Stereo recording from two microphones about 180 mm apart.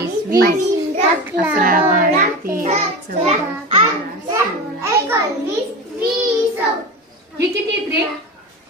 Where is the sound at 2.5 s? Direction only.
45° right (ahead or behind).